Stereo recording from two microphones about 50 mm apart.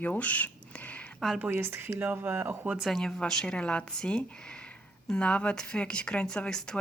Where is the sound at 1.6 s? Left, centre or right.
Right.